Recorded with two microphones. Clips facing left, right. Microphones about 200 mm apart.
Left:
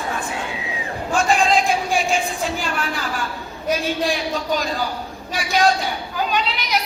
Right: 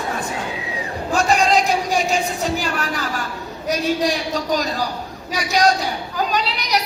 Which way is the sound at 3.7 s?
45° right (ahead or behind).